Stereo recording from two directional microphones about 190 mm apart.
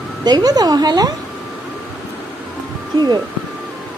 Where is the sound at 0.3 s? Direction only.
20° right (ahead or behind).